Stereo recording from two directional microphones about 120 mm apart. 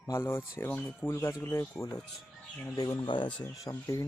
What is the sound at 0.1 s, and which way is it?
Speech, 20° left (ahead or behind).